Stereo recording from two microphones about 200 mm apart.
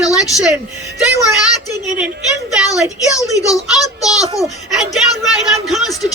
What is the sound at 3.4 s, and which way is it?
Speech, 15° left (ahead or behind).